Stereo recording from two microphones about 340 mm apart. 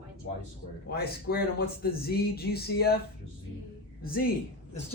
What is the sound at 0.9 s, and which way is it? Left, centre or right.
Speech, left.